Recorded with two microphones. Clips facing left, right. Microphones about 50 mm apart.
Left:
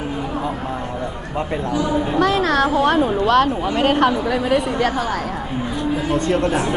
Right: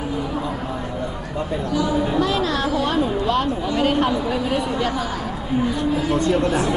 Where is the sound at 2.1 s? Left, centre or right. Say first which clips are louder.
Left 4 dB; left.